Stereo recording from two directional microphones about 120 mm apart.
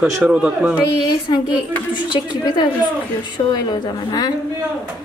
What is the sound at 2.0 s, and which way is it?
A woman's voice, 40° left (ahead or behind).